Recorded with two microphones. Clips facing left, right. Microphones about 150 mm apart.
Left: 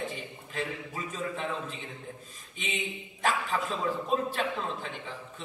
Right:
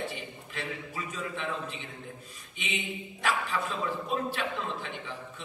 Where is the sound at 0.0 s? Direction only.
40° left (ahead or behind).